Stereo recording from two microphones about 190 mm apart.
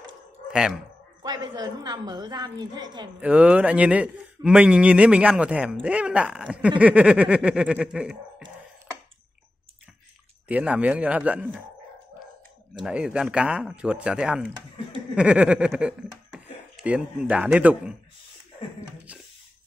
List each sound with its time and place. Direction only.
0.5 s speech: 5° right (ahead or behind)
1.2 s a woman's voice: 20° right (ahead or behind)
3.2 s speech: 5° right (ahead or behind)
10.5 s speech: 5° right (ahead or behind)
12.8 s speech: 5° right (ahead or behind)
19.1 s speech: 5° right (ahead or behind)